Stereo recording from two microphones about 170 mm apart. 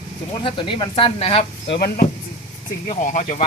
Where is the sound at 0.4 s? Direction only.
30° left (ahead or behind).